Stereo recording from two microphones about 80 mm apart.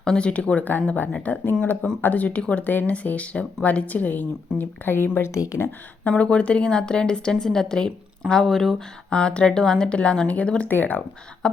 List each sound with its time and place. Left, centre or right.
0.0 s a woman's voice: centre; by 5.7 s left
6.1 s a woman's voice: centre